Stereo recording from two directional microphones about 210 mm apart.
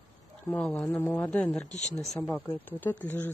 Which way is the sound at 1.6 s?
35° left (ahead or behind).